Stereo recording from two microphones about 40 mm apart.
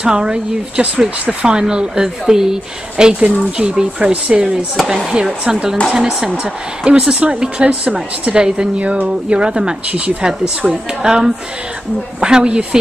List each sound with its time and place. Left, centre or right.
0.0 s a woman's voice: centre
4.8 s speech: centre
6.4 s a woman's voice: right
8.7 s a sound: right
9.0 s a woman's voice: right
9.8 s a sound: right
11.0 s a woman's voice: centre